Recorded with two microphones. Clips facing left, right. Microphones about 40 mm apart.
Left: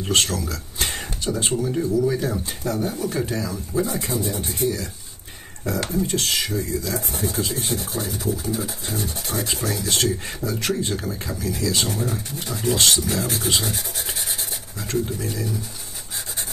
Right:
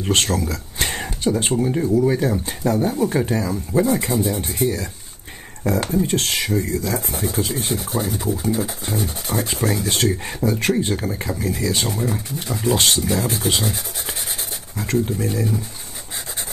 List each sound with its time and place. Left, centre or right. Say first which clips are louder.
0.1 s speech: right 2 dB; right
5.8 s speech: right 3 dB; centre
6.0 s speech: right 2 dB; right
14.8 s speech: right 4 dB; right